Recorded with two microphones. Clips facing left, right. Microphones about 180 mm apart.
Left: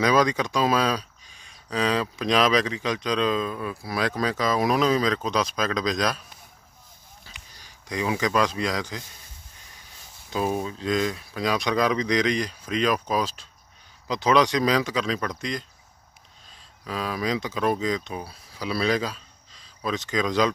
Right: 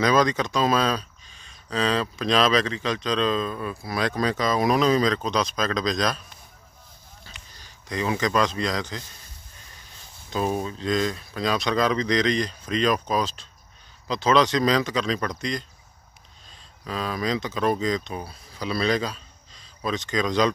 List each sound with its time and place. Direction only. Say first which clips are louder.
0.0 s speech: even; 10° left (ahead or behind)
7.2 s speech: right 1 dB; 10° left (ahead or behind)
10.3 s speech: even; 5° left (ahead or behind)
16.8 s speech: even; 5° left (ahead or behind)